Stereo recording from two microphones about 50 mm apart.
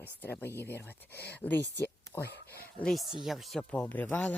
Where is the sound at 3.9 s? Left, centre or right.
Left.